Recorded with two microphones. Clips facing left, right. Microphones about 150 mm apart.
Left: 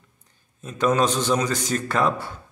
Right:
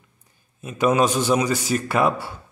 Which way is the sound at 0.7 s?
10° right (ahead or behind).